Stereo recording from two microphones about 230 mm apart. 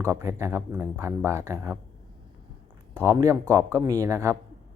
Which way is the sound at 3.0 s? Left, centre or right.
Centre.